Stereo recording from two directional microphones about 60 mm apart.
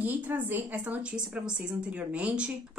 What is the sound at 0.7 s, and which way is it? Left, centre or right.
Speech, right.